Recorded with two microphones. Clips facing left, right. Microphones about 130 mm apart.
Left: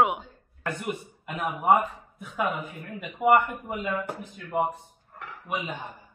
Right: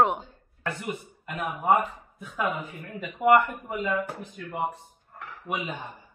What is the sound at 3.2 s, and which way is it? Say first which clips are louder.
A woman's voice: right 1 dB; 5° left (ahead or behind).